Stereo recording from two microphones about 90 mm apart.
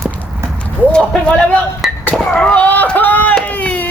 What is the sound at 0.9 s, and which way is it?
Speech, 10° left (ahead or behind).